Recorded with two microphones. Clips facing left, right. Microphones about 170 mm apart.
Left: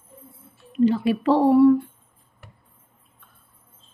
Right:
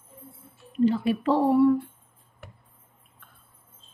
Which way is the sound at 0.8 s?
90° left.